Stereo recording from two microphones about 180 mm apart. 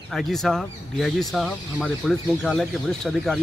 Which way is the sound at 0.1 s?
Centre (ahead or behind).